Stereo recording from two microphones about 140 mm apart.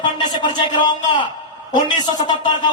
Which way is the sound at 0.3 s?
35° left (ahead or behind).